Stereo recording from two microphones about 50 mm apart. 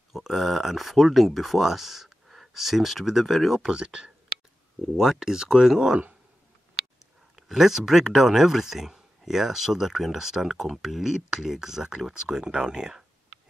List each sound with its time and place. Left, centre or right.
0.1 s speech: centre
3.7 s speech: centre
4.9 s speech: centre
7.3 s speech: centre